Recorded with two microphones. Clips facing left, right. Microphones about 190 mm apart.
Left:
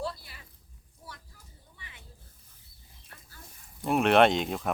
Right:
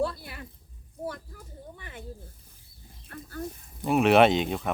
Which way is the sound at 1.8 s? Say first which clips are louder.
Right 11 dB; 50° right (ahead or behind).